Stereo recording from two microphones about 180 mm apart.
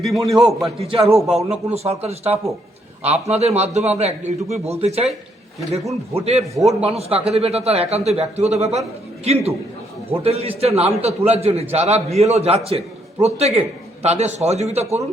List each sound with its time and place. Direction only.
0.3 s a man's voice: centre (ahead or behind)
0.8 s a man's voice: 35° right (ahead or behind)
6.1 s a man's voice: 35° right (ahead or behind)
6.4 s a man's voice: centre (ahead or behind)
6.7 s a man's voice: 35° right (ahead or behind)